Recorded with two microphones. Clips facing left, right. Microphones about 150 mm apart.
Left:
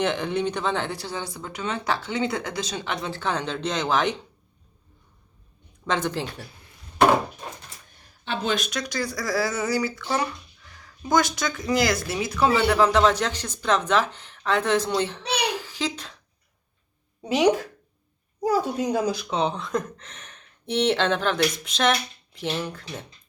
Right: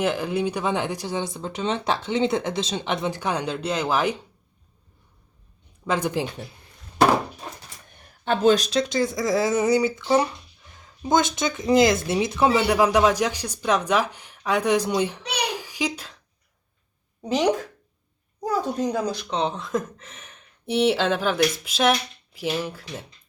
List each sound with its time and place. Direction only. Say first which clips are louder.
0.0 s speech: right 1 dB; 5° right (ahead or behind)
5.8 s speech: right 2 dB; 10° right (ahead or behind)
8.2 s speech: right 8 dB; 45° right (ahead or behind)
8.8 s speech: right 6 dB; 25° right (ahead or behind)
15.6 s a sound: right 2 dB; 15° right (ahead or behind)
17.2 s speech: left 1 dB; centre (ahead or behind)